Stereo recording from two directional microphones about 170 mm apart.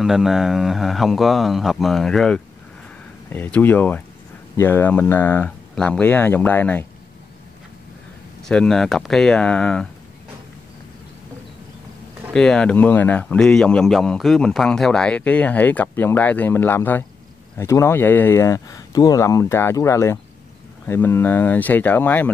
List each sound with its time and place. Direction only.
0.0 s a man's voice: centre (ahead or behind)
8.4 s speech: 5° left (ahead or behind)
12.3 s a man's voice: 5° left (ahead or behind)